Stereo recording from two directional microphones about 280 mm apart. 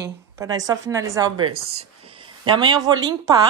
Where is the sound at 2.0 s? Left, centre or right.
Centre.